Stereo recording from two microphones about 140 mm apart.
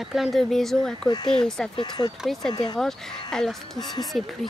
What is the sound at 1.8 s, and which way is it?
Speech, 30° left (ahead or behind).